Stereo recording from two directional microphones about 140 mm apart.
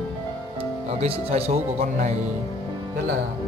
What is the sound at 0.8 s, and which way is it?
Speech, 50° right (ahead or behind).